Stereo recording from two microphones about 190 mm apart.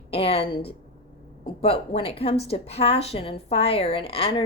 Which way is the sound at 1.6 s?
30° left (ahead or behind).